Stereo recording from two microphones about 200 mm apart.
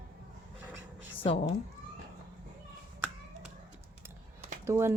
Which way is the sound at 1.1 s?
30° left (ahead or behind).